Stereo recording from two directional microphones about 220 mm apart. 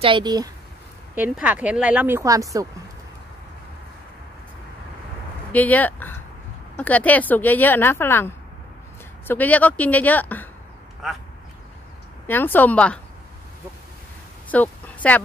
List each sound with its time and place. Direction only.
0.0 s speech: 20° right (ahead or behind)
1.1 s speech: 5° right (ahead or behind)
5.5 s speech: 5° left (ahead or behind)
9.3 s speech: 5° left (ahead or behind)
12.3 s speech: 10° left (ahead or behind)
14.5 s a sound: 5° left (ahead or behind)